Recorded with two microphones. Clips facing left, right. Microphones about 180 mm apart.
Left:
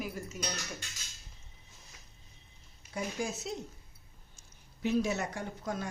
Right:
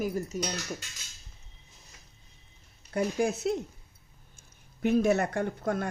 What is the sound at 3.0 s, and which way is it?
Speech, 60° right (ahead or behind).